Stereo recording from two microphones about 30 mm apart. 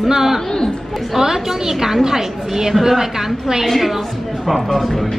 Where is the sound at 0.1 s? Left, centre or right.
Centre.